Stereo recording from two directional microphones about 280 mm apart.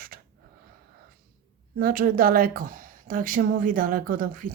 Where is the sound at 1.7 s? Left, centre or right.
Right.